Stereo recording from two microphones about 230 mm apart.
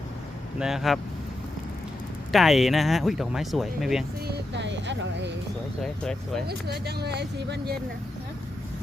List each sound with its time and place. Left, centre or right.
0.6 s speech: centre
2.3 s speech: centre
4.3 s speech: right
5.8 s speech: centre
6.5 s speech: right